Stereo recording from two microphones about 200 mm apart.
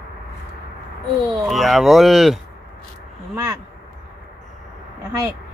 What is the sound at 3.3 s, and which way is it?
Speech, 10° right (ahead or behind).